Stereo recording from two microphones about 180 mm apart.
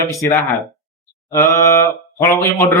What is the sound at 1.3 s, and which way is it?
Speech, 15° left (ahead or behind).